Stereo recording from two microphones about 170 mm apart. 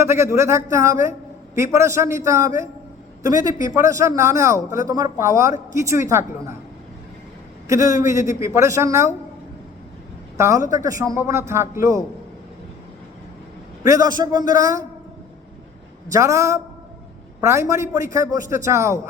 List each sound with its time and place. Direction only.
0.0 s a man's voice: 15° right (ahead or behind)
7.7 s a man's voice: 20° right (ahead or behind)
10.3 s a man's voice: 15° right (ahead or behind)
13.8 s a man's voice: 20° right (ahead or behind)
16.1 s a man's voice: 15° right (ahead or behind)